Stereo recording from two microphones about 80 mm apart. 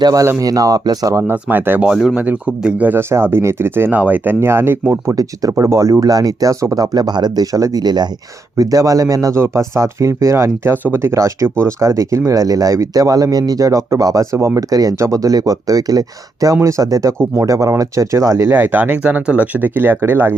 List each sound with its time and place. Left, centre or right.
0.0 s speech: right
1.3 s speech: right
1.9 s speech: centre
2.1 s speech: right
3.0 s speech: right
5.1 s speech: right
8.5 s speech: right
18.5 s speech: right